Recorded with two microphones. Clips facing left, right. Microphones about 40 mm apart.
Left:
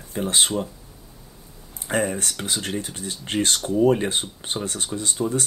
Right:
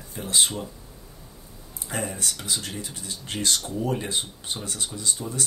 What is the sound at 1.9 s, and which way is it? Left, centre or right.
Speech, left.